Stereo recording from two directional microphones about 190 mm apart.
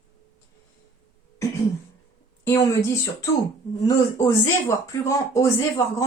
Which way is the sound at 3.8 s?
15° left (ahead or behind).